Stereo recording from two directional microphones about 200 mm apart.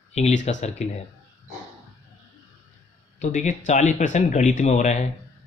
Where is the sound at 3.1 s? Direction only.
35° left (ahead or behind).